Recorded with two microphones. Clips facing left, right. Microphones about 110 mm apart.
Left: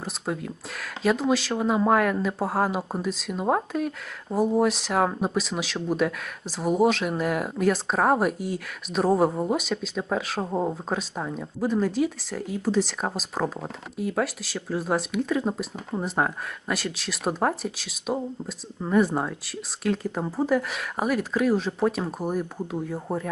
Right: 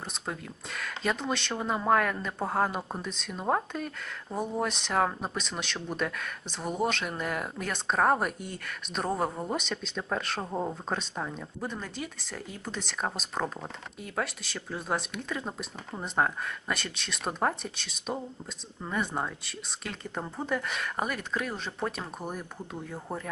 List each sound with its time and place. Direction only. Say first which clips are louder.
0.0 s speech: left 7 dB; 5° left (ahead or behind)
10.5 s speech: left 6 dB; 15° left (ahead or behind)